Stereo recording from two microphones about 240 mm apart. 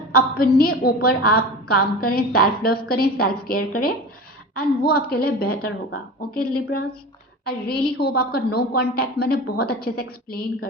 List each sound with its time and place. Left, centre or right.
0.1 s a woman's voice: left